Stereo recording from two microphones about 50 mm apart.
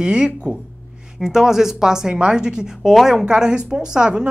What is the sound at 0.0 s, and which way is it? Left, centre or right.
A woman's voice, centre.